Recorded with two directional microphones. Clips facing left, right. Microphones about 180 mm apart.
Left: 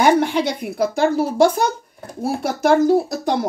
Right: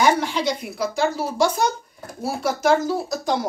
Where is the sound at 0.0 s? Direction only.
55° left (ahead or behind).